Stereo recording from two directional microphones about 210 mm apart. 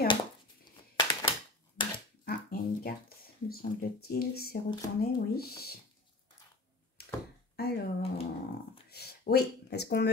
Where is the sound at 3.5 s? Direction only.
45° left (ahead or behind).